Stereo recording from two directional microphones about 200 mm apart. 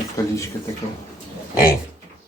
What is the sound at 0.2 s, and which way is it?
Speech, 15° left (ahead or behind).